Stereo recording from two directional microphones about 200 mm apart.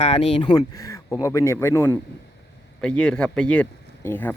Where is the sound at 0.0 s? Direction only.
30° left (ahead or behind).